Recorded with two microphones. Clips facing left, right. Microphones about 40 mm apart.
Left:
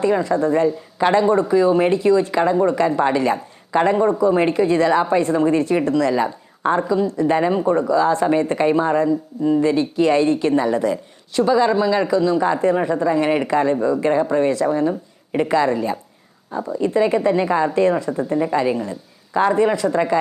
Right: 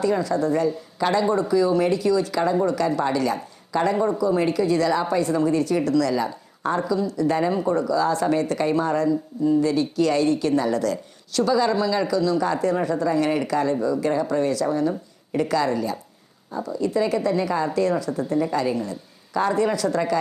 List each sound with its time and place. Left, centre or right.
0.0 s a woman's voice: left